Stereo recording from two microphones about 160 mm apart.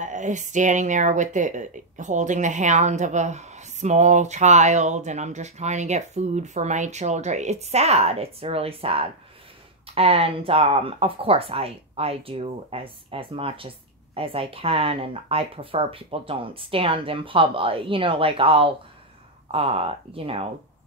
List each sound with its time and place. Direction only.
0.0 s speech: 50° right (ahead or behind)